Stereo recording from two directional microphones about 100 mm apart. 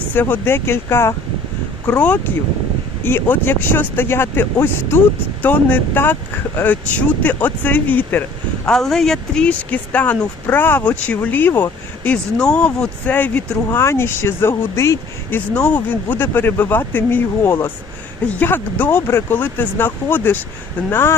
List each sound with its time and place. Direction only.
0.1 s speech: 20° left (ahead or behind)
8.6 s speech: 5° left (ahead or behind); by 21.2 s 25° left (ahead or behind)